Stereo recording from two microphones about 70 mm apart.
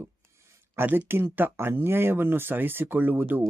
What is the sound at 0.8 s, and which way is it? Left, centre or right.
Speech, right.